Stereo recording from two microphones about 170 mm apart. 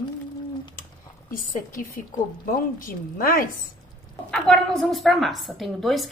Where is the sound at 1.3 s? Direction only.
55° left (ahead or behind).